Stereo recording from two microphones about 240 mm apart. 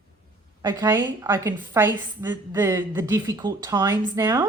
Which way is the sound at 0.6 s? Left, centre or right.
Centre.